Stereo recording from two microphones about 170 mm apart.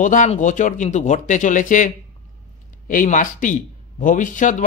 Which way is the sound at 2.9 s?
50° left (ahead or behind).